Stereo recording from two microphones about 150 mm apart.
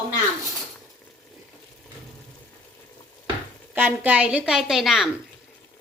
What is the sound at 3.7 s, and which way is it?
A woman's voice, 10° right (ahead or behind).